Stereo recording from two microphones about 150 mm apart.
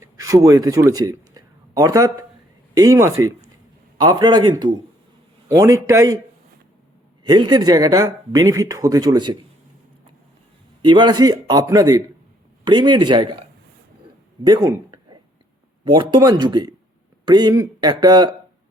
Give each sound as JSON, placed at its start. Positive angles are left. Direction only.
{"t": 0.0, "sound": "speech", "side_deg": -20}
{"t": 7.3, "sound": "speech", "side_deg": -30}
{"t": 10.8, "sound": "speech", "side_deg": -30}
{"t": 14.4, "sound": "speech", "side_deg": -25}